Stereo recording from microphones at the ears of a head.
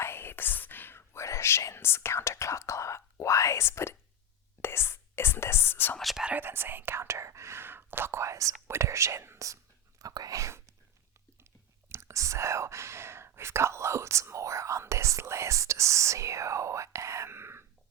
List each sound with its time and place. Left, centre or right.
0.0 s whispering: left
4.6 s speech: left
6.5 s speech: right
11.9 s speech: right